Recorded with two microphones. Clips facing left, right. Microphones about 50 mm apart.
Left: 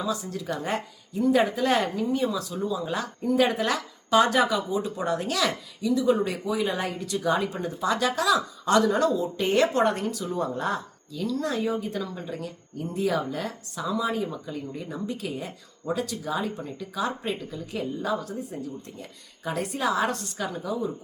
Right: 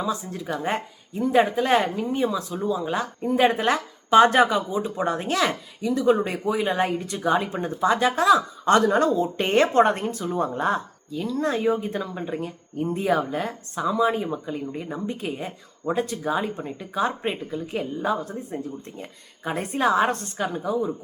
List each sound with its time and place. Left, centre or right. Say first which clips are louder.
0.0 s speech: right 2 dB; right